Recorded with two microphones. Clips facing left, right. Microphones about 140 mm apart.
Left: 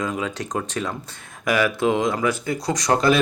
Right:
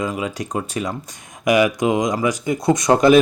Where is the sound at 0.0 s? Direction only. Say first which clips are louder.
Right 2 dB; 10° right (ahead or behind).